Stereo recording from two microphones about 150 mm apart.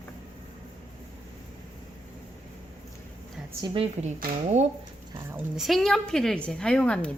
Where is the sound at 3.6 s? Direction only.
25° right (ahead or behind).